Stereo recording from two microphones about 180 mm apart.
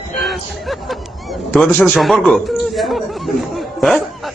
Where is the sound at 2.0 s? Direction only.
Centre (ahead or behind).